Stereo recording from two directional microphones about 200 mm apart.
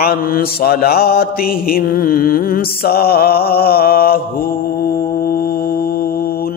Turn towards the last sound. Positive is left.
turn(degrees=50)  # may be behind; listen again after turning